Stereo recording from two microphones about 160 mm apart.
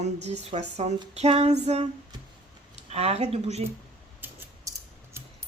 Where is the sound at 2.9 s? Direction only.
40° right (ahead or behind).